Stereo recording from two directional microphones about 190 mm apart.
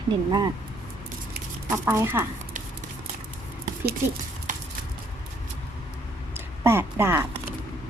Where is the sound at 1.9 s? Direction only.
10° right (ahead or behind).